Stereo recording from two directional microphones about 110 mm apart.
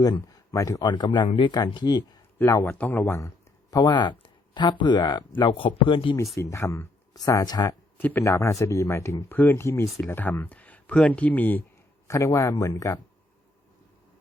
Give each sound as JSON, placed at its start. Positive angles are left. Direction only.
{"t": 0.0, "sound": "speech", "side_deg": 35}
{"t": 0.9, "sound": "speech", "side_deg": 45}
{"t": 2.4, "sound": "speech", "side_deg": 25}
{"t": 3.0, "sound": "speech", "side_deg": 25}
{"t": 6.3, "sound": "speech", "side_deg": 25}
{"t": 8.2, "sound": "speech", "side_deg": 25}
{"t": 12.0, "sound": "speech", "side_deg": 30}